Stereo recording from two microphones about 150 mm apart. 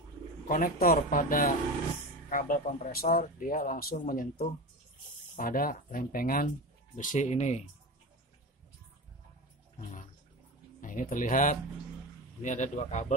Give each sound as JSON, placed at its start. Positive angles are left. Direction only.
{"t": 0.5, "sound": "speech", "side_deg": 70}
{"t": 2.2, "sound": "speech", "side_deg": 65}
{"t": 7.0, "sound": "speech", "side_deg": 55}
{"t": 9.8, "sound": "bathtub", "side_deg": 60}
{"t": 10.8, "sound": "speech", "side_deg": 65}
{"t": 12.4, "sound": "speech", "side_deg": 55}